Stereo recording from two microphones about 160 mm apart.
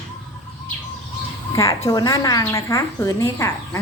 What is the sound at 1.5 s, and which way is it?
A woman's voice, 20° left (ahead or behind).